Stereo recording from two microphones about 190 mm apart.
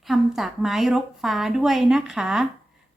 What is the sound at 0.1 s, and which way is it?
Speech, centre (ahead or behind).